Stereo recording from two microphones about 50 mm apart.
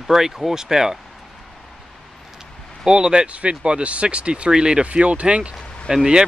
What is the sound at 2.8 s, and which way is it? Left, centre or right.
Speech, centre.